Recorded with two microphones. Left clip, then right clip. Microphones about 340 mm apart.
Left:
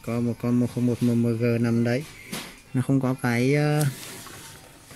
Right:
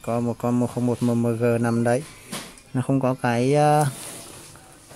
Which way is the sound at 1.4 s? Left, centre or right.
Right.